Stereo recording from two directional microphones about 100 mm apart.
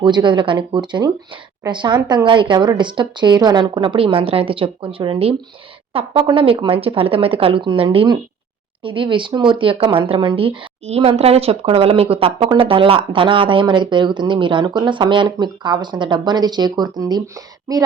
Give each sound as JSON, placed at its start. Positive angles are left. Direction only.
{"t": 0.0, "sound": "speech", "side_deg": -50}
{"t": 10.8, "sound": "a woman's voice", "side_deg": -90}